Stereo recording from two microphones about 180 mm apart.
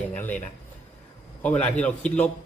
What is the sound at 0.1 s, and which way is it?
A man's voice, 10° left (ahead or behind).